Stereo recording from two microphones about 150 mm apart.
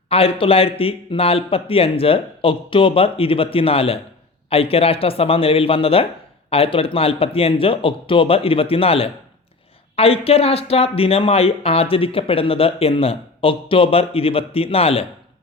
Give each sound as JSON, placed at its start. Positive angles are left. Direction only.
{"t": 0.1, "sound": "speech", "side_deg": 40}